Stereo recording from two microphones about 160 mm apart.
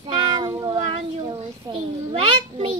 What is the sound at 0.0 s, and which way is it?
Meow, 30° right (ahead or behind).